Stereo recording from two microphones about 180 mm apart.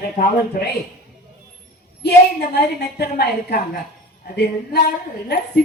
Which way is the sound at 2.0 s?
65° left (ahead or behind).